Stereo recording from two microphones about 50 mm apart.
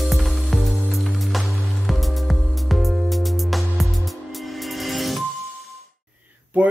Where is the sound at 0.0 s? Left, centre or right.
Centre.